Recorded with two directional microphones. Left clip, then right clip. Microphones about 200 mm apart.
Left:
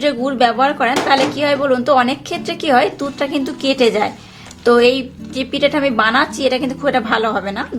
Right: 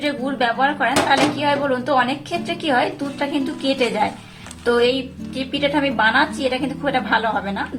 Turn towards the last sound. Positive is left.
turn(degrees=40)  # may be behind; listen again after turning